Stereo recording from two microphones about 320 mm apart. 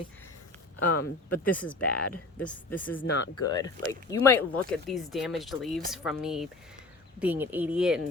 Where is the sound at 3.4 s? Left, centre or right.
Centre.